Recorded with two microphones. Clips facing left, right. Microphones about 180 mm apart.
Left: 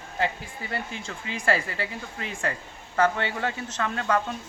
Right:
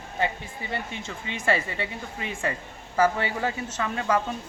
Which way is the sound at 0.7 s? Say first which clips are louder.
Even; centre (ahead or behind).